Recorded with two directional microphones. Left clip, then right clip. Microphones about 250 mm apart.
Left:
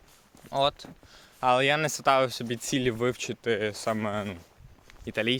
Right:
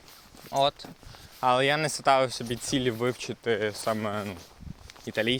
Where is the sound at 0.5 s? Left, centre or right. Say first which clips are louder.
Right 1 dB; centre.